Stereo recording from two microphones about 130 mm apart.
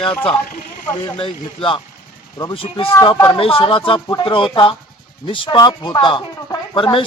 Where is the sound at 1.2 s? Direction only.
45° left (ahead or behind).